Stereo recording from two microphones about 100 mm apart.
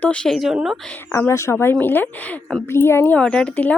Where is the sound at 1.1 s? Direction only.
30° left (ahead or behind).